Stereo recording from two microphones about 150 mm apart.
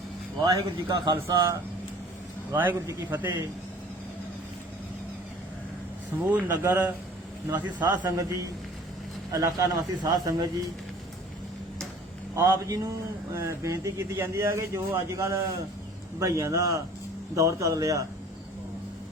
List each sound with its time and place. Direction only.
0.4 s speech: 25° right (ahead or behind)
6.3 s speech: 10° right (ahead or behind)
7.7 s speech: 30° right (ahead or behind)
9.3 s speech: 25° right (ahead or behind)
12.4 s speech: 20° right (ahead or behind)